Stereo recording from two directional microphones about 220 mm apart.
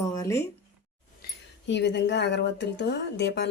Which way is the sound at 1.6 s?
50° left (ahead or behind).